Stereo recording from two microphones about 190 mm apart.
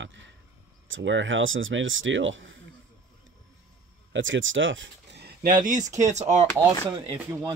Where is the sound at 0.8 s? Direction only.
85° right.